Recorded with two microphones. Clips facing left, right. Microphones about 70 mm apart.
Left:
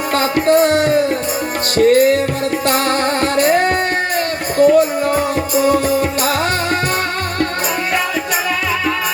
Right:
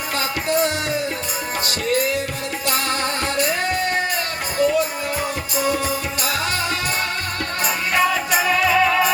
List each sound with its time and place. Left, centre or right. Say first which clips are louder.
0.2 s music: left 8 dB; left
3.4 s music: left 8 dB; left
8.4 s music: right 2 dB; centre